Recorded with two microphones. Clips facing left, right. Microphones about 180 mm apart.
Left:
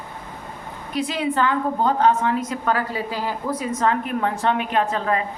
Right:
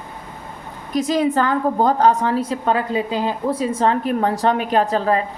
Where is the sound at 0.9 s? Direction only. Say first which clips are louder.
Right 5 dB; 40° right (ahead or behind).